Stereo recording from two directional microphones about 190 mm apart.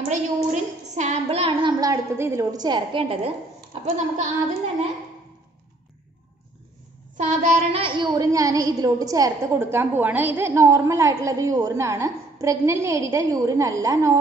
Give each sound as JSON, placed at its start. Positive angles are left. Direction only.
{"t": 0.1, "sound": "a sound", "side_deg": -35}
{"t": 3.8, "sound": "speech", "side_deg": -40}
{"t": 7.2, "sound": "a woman's voice", "side_deg": -35}